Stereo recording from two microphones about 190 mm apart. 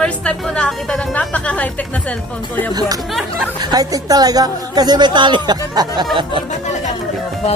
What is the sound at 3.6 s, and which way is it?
A woman's voice, 20° right (ahead or behind).